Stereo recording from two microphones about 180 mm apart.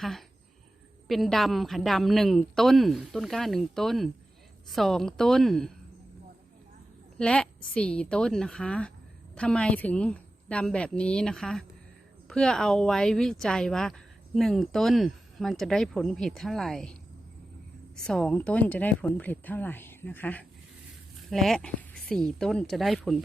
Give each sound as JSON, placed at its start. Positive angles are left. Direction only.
{"t": 0.0, "sound": "speech", "side_deg": 0}
{"t": 7.2, "sound": "speech", "side_deg": 5}